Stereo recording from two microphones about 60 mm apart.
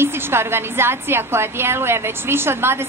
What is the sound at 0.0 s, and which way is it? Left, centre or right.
A woman's voice, right.